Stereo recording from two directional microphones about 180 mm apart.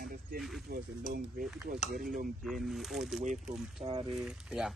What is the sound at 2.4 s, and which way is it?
Speech, centre (ahead or behind).